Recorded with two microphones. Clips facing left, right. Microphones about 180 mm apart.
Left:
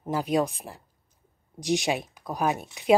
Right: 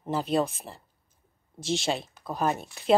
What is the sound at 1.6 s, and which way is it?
Speech, 15° left (ahead or behind).